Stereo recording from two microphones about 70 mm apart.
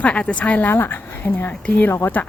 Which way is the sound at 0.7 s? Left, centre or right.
Left.